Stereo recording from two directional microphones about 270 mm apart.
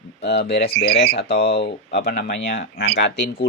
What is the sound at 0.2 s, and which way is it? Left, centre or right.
Speech, left.